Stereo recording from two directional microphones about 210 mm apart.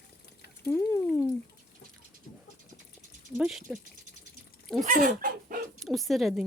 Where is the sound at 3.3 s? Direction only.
5° right (ahead or behind).